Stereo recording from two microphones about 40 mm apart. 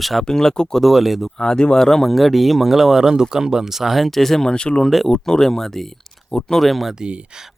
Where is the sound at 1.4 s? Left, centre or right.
Centre.